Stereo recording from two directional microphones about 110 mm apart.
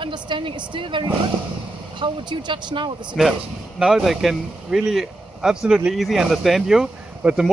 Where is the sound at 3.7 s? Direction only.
5° right (ahead or behind).